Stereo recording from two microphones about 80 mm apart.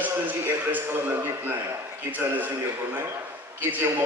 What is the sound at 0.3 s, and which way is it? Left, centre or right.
A man's voice, right.